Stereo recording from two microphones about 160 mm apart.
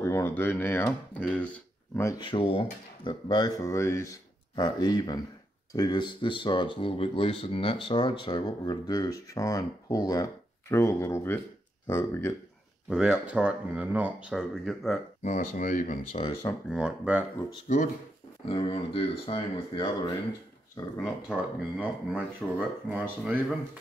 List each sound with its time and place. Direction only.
0.0 s speech: 15° left (ahead or behind)
2.1 s speech: 30° left (ahead or behind); by 12.4 s 15° left (ahead or behind)
12.9 s speech: 5° right (ahead or behind)
15.2 s speech: 50° left (ahead or behind)
16.6 s speech: 5° right (ahead or behind)
18.5 s speech: 35° left (ahead or behind)
21.0 s speech: 5° right (ahead or behind)